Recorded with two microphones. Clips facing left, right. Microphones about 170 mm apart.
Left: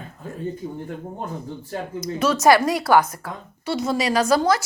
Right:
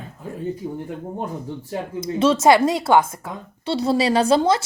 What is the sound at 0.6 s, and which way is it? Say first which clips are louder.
Speech: right 2 dB; 10° right (ahead or behind).